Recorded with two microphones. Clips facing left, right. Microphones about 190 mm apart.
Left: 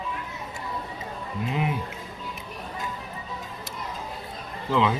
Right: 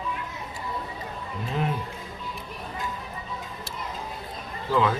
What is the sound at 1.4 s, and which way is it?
Speech, 15° left (ahead or behind).